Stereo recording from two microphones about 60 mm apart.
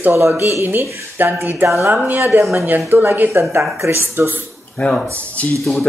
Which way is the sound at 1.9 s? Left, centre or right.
Right.